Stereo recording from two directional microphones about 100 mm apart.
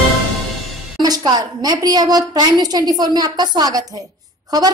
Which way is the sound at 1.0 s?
40° right (ahead or behind).